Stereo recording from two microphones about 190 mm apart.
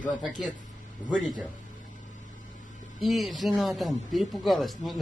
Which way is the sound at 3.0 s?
Centre (ahead or behind).